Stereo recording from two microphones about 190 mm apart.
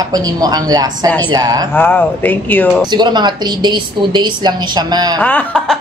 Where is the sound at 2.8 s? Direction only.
25° right (ahead or behind).